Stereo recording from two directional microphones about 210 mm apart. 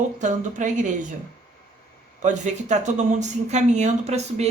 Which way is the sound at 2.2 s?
35° right (ahead or behind).